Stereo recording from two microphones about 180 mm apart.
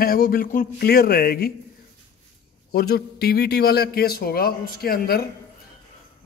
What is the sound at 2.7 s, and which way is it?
Speech, 60° left (ahead or behind).